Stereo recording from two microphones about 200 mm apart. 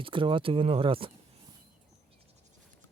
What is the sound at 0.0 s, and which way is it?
Speech, 25° right (ahead or behind).